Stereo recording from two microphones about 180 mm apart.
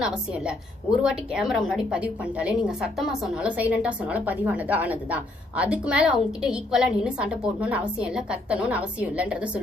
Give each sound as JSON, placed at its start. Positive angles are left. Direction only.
{"t": 0.0, "sound": "a woman's voice", "side_deg": -5}